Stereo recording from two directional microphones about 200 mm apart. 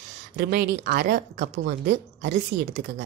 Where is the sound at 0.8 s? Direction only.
45° right (ahead or behind).